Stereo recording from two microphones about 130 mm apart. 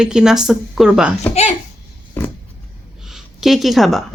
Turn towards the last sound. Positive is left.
turn(degrees=0)  # may be behind; listen again after turning